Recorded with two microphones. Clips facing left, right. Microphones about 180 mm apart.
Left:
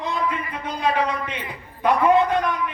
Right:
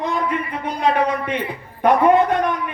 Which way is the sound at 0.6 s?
60° right (ahead or behind).